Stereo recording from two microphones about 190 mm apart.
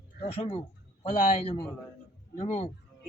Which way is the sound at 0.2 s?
35° left (ahead or behind).